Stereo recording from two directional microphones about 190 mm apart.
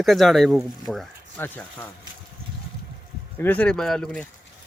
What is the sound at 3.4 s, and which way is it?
Speech, 10° left (ahead or behind).